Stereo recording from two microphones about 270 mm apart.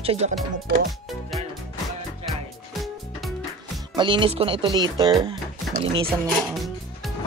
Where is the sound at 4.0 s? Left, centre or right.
Centre.